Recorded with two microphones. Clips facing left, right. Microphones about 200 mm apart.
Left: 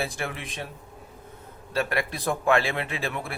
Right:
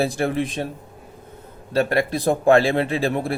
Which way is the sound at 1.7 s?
35° right (ahead or behind).